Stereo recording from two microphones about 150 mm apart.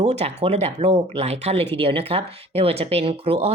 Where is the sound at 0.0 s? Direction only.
45° right (ahead or behind).